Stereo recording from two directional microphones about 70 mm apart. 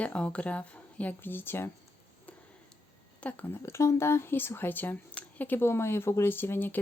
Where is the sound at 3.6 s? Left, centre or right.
Left.